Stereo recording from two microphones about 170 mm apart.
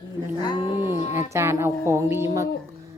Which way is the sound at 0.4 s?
25° left (ahead or behind).